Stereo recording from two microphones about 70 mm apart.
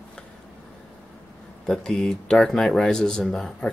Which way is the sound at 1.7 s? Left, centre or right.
Centre.